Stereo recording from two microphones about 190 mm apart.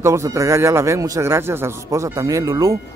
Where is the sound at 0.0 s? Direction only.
15° right (ahead or behind).